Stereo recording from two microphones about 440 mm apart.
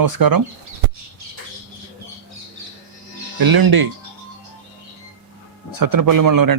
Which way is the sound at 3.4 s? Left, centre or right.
Right.